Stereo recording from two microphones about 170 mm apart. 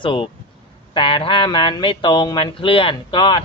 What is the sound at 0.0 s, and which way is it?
A man's voice, 30° left (ahead or behind).